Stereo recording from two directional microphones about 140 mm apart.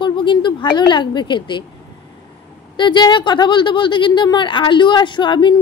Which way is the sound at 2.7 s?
35° left (ahead or behind).